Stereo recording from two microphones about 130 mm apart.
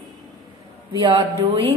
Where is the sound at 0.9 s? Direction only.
40° right (ahead or behind).